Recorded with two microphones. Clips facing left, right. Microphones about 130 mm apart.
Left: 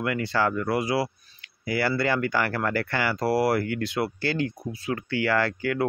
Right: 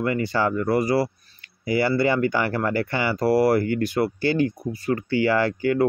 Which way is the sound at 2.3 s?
15° right (ahead or behind).